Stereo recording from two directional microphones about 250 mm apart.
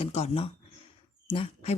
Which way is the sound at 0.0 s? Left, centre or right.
Left.